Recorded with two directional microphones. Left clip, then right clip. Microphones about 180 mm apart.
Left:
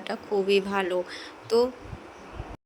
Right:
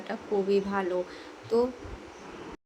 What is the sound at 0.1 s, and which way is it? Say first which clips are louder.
Speech: left 3 dB; 50° left (ahead or behind).